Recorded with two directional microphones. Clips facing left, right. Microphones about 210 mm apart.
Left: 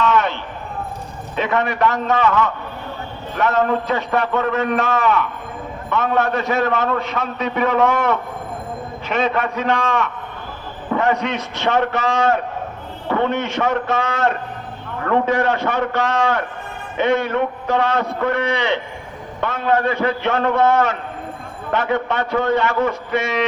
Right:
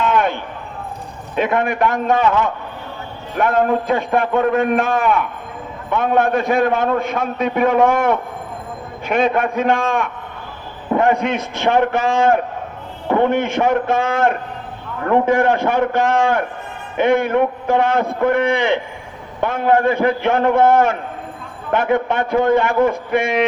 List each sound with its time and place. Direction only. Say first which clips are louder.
0.0 s a sound: right 1 dB; 50° right (ahead or behind)
1.4 s a man's voice: right 2 dB; 50° right (ahead or behind)
3.4 s a man's voice: right 2 dB; 50° right (ahead or behind)